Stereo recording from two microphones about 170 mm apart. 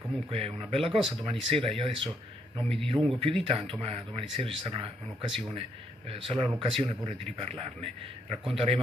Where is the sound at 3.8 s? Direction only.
35° right (ahead or behind).